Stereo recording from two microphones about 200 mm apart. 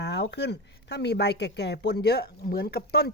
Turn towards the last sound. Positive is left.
turn(degrees=50)  # may be behind; listen again after turning